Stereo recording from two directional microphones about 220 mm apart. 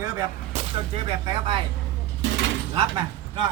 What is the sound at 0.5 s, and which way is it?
Gunshot, 30° right (ahead or behind).